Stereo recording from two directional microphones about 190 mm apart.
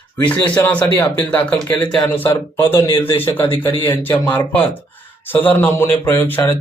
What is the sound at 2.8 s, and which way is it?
Speech, 25° left (ahead or behind).